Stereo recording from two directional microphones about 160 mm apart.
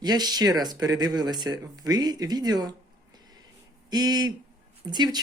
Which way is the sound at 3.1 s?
25° right (ahead or behind).